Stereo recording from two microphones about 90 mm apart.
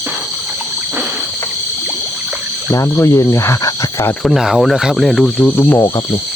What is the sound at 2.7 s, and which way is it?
Speech, 25° left (ahead or behind).